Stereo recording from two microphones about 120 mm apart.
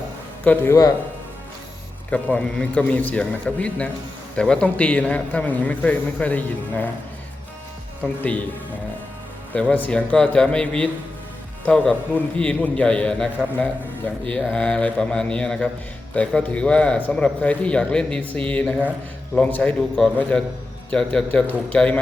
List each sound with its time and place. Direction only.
0.4 s speech: 20° left (ahead or behind)
2.0 s speech: 10° left (ahead or behind)
8.0 s speech: 10° left (ahead or behind)
9.5 s speech: 10° left (ahead or behind)